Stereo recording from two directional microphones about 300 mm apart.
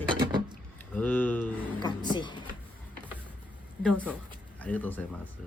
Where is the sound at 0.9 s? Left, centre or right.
Centre.